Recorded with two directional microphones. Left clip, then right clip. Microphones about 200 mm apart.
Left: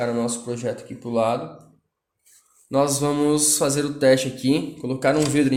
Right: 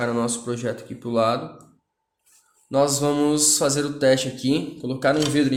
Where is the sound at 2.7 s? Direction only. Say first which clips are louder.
Right 1 dB; centre (ahead or behind).